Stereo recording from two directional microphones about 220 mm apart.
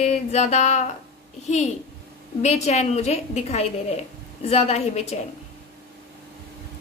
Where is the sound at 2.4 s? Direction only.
30° left (ahead or behind).